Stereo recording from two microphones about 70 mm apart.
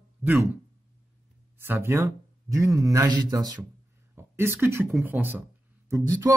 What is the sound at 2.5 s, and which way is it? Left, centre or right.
Speech, right.